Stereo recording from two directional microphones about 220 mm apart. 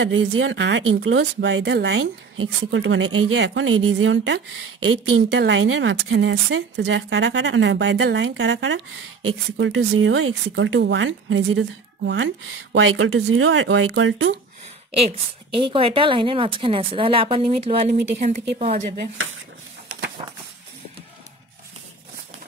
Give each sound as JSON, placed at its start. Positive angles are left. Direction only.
{"t": 0.0, "sound": "speech", "side_deg": -65}
{"t": 15.0, "sound": "a woman's voice", "side_deg": -25}